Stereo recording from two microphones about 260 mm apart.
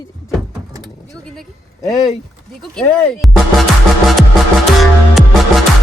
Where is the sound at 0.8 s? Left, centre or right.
Centre.